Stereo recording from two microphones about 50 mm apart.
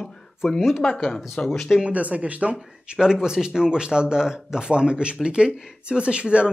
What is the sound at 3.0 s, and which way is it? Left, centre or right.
Speech, centre.